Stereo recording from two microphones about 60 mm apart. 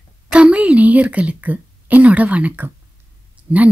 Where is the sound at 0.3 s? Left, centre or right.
Centre.